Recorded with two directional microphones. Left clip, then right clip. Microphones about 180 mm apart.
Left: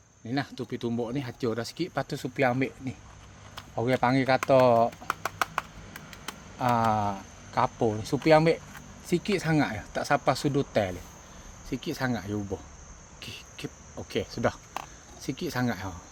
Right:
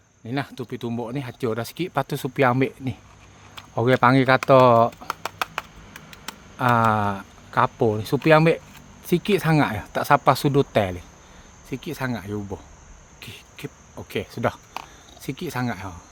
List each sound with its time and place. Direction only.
0.3 s speech: 45° right (ahead or behind)
5.2 s a sound: 5° left (ahead or behind)
6.6 s speech: 55° right (ahead or behind)
11.7 s speech: 30° right (ahead or behind)